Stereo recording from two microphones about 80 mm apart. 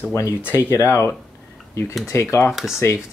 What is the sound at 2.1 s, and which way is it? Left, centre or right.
Speech, left.